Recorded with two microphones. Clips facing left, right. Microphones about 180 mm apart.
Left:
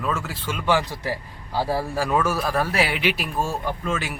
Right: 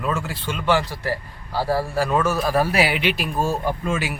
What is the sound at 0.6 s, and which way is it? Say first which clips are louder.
A man's voice: right 1 dB; 15° left (ahead or behind).